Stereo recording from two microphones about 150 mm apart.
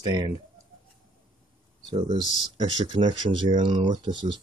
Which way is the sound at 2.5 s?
30° right (ahead or behind).